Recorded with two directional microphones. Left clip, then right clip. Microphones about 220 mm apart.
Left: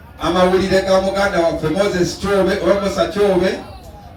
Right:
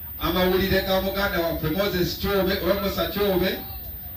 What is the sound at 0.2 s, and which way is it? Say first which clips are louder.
A man's voice: left 8 dB; 45° left (ahead or behind).